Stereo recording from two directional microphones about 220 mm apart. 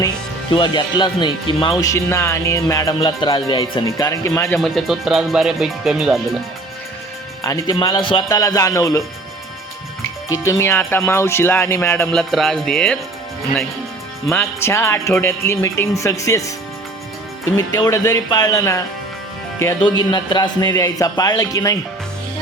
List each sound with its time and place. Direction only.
0.5 s speech: 20° left (ahead or behind)
4.6 s speech: centre (ahead or behind)
7.4 s speech: 15° left (ahead or behind)
10.2 s speech: 15° left (ahead or behind)
14.3 s speech: 10° left (ahead or behind)
17.6 s speech: 15° left (ahead or behind)